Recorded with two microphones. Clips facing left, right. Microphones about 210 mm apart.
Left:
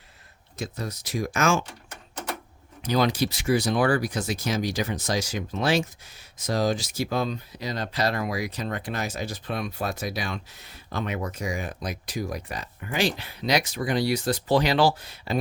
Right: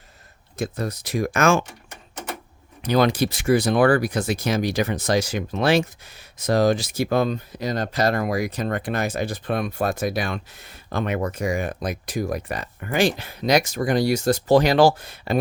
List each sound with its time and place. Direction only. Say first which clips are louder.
0.5 s speech: right 6 dB; 55° right (ahead or behind)
2.8 s speech: right 4 dB; 60° right (ahead or behind)